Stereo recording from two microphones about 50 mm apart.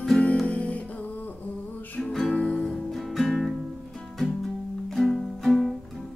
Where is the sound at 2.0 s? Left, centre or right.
Centre.